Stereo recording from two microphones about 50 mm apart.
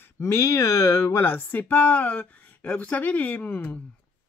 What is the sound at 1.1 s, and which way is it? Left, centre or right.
Speech, left.